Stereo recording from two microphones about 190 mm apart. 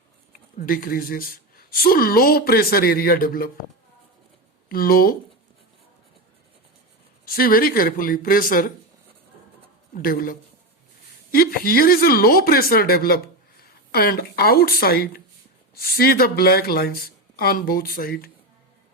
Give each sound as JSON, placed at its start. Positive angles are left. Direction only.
{"t": 0.5, "sound": "speech", "side_deg": 50}
{"t": 4.7, "sound": "speech", "side_deg": 50}
{"t": 7.3, "sound": "speech", "side_deg": 50}
{"t": 9.9, "sound": "speech", "side_deg": 50}